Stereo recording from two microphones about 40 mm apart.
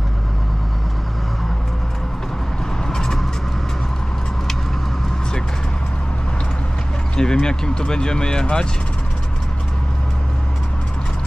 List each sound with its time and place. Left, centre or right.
2.9 s vehicle: centre
7.2 s speech: centre